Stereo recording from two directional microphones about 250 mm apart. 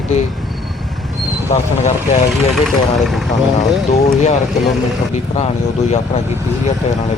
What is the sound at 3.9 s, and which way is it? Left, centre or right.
Speech, left.